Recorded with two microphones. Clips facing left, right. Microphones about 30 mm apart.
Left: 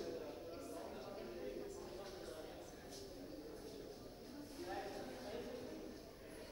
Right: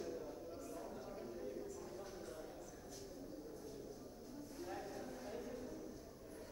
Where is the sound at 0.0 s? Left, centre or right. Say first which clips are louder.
Even; left.